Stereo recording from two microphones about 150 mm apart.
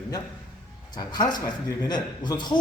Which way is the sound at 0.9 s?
25° left (ahead or behind).